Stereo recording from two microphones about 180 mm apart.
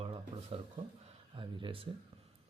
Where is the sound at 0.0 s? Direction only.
30° right (ahead or behind).